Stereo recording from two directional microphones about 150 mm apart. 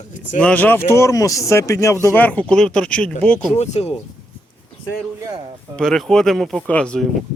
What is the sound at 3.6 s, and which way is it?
Speech, 45° left (ahead or behind).